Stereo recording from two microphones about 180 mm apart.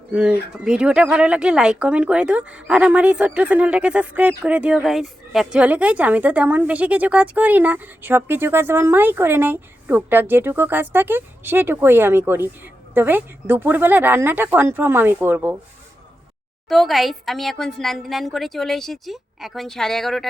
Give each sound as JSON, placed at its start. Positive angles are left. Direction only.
{"t": 0.1, "sound": "speech", "side_deg": -10}
{"t": 16.6, "sound": "a woman's voice", "side_deg": 0}